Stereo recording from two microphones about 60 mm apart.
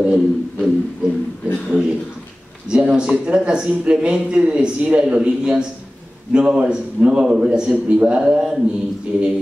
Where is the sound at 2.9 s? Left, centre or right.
Centre.